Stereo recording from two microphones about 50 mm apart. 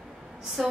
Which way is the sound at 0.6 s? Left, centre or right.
Centre.